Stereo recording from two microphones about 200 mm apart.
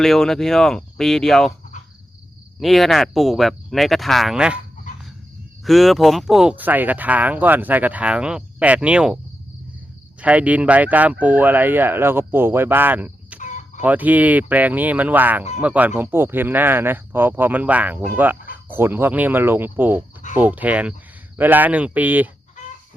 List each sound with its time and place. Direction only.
0.0 s speech: centre (ahead or behind)
2.6 s speech: centre (ahead or behind)
5.6 s speech: centre (ahead or behind)
10.2 s speech: 5° right (ahead or behind)
13.4 s chicken: 40° left (ahead or behind)
13.8 s speech: 10° right (ahead or behind)